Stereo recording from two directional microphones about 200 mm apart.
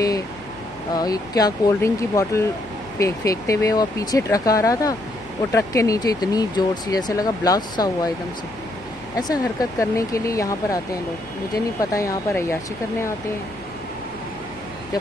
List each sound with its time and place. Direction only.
0.9 s speech: 20° left (ahead or behind)
9.1 s speech: 20° left (ahead or behind)